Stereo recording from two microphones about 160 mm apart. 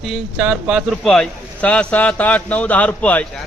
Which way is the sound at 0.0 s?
5° right (ahead or behind).